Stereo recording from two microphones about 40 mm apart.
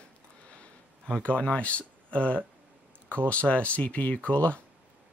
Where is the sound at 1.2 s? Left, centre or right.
Left.